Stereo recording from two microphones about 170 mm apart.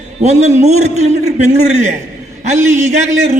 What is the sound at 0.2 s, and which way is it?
A man's voice, 40° right (ahead or behind).